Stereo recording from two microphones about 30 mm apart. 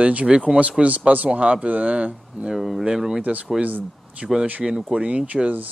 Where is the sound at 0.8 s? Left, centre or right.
Right.